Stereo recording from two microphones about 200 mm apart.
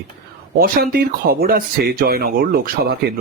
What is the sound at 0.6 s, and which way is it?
Speech, 50° right (ahead or behind).